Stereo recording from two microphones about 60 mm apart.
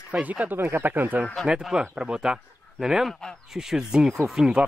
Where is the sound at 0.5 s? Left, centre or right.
Right.